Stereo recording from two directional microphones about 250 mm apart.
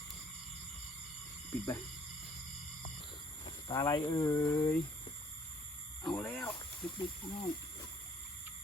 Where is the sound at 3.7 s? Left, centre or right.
Centre.